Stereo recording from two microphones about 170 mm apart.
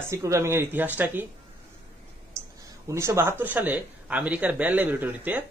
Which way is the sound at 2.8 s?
15° right (ahead or behind).